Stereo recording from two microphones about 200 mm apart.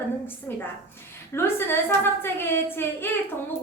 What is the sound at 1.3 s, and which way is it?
A woman's voice, 10° left (ahead or behind).